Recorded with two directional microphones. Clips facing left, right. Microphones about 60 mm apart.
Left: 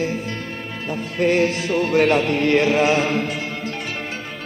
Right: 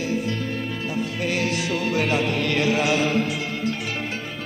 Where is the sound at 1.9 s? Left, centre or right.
Left.